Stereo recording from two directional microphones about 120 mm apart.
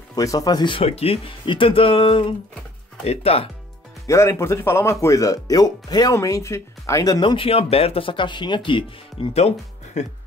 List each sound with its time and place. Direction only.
0.1 s speech: 30° left (ahead or behind)
0.8 s speech: 55° left (ahead or behind)
3.0 s speech: 60° left (ahead or behind)
4.1 s speech: 25° left (ahead or behind)
7.2 s speech: 45° left (ahead or behind)
9.9 s speech: 70° left (ahead or behind)